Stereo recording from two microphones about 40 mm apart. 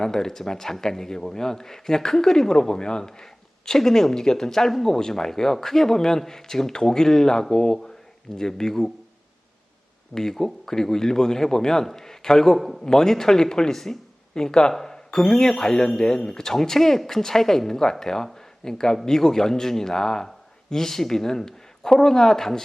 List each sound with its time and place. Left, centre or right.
0.0 s a man's voice: centre
10.2 s a man's voice: centre
12.5 s a man's voice: centre
12.8 s a man's voice: centre
18.3 s a sound: centre
19.0 s a man's voice: centre